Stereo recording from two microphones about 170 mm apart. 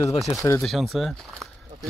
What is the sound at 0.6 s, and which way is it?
Speech, centre (ahead or behind).